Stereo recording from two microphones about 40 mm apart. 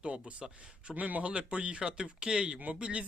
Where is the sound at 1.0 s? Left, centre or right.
Right.